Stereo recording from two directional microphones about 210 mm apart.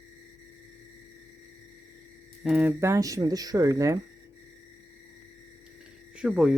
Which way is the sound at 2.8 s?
15° right (ahead or behind).